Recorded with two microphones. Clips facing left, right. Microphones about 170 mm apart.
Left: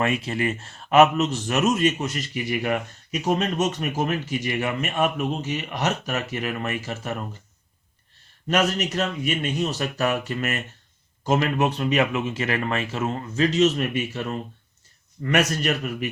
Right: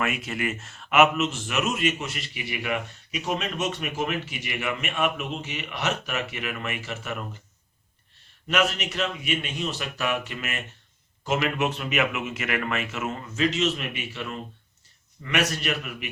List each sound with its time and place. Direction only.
0.0 s speech: 30° left (ahead or behind)
8.4 s a man's voice: 40° left (ahead or behind)